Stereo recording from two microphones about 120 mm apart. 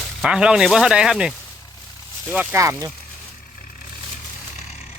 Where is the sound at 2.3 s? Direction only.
15° right (ahead or behind).